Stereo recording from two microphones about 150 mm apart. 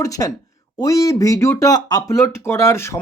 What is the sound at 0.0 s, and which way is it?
Speech, 20° left (ahead or behind).